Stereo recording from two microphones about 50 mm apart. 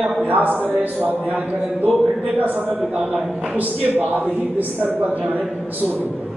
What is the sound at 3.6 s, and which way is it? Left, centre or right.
A man's voice, right.